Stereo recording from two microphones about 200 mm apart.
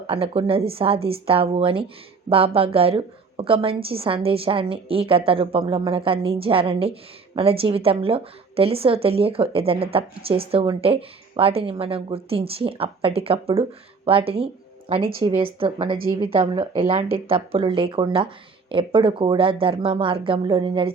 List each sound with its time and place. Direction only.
0.1 s a woman's voice: 30° right (ahead or behind)